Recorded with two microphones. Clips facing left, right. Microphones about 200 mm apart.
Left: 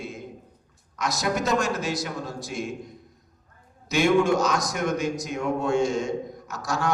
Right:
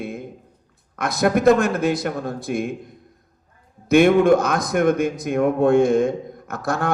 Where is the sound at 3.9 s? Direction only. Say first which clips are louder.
Right 7 dB; 55° right (ahead or behind).